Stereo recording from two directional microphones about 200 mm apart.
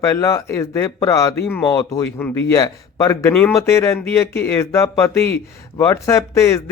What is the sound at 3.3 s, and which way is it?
Speech, 5° left (ahead or behind).